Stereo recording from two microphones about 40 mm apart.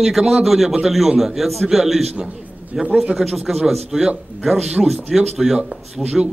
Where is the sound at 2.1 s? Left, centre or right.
Right.